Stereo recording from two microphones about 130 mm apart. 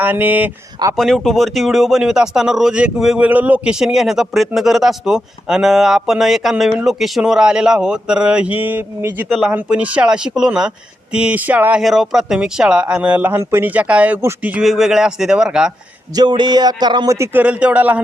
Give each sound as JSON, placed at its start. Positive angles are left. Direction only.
{"t": 0.0, "sound": "speech", "side_deg": -10}
{"t": 0.9, "sound": "speech", "side_deg": 0}
{"t": 9.3, "sound": "speech", "side_deg": 0}
{"t": 9.6, "sound": "speech", "side_deg": -10}
{"t": 11.8, "sound": "speech", "side_deg": 0}
{"t": 14.6, "sound": "speech", "side_deg": 0}
{"t": 16.1, "sound": "a sound", "side_deg": -35}
{"t": 17.2, "sound": "speech", "side_deg": -15}